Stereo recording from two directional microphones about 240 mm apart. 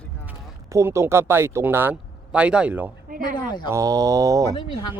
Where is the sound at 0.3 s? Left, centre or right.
Centre.